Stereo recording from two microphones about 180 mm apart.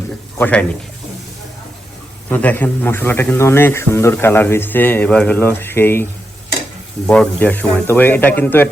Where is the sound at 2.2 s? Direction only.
10° left (ahead or behind).